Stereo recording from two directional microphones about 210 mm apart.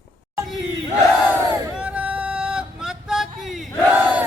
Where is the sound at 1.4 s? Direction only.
15° right (ahead or behind).